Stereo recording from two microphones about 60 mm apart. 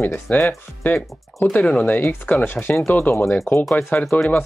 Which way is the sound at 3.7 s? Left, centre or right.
Left.